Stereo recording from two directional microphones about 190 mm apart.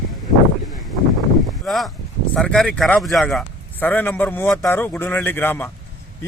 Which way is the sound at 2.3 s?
5° left (ahead or behind).